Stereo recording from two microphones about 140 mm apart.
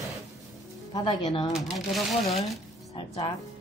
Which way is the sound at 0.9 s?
30° left (ahead or behind).